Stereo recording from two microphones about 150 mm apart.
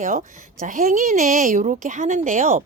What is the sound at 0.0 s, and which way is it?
A woman's voice, 55° right (ahead or behind).